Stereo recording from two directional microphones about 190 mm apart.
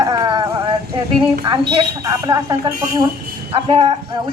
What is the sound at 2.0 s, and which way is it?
Speech, 20° right (ahead or behind).